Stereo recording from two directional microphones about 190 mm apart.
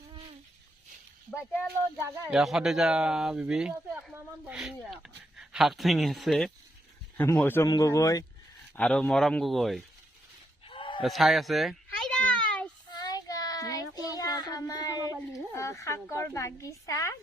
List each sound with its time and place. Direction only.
2.0 s speech: 10° right (ahead or behind)
7.2 s speech: 10° left (ahead or behind)
8.7 s speech: 5° left (ahead or behind)
10.7 s a sound: 25° left (ahead or behind)
11.0 s a sound: centre (ahead or behind)
13.0 s child singing: 20° left (ahead or behind)